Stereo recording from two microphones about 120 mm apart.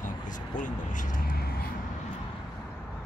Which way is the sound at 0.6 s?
90° left.